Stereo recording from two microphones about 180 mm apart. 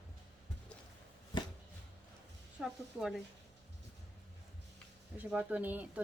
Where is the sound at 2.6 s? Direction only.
5° right (ahead or behind).